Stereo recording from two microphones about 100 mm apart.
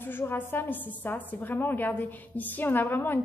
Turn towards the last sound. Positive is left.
turn(degrees=20)  # may be behind; listen again after turning